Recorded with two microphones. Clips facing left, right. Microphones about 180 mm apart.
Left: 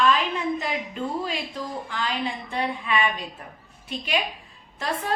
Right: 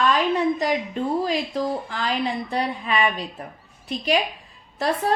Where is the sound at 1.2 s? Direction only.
40° right (ahead or behind).